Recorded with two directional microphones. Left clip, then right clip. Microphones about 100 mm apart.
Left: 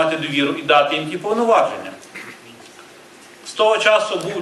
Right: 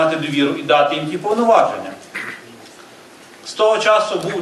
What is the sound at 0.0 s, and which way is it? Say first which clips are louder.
Speech: right 2 dB; 30° left (ahead or behind).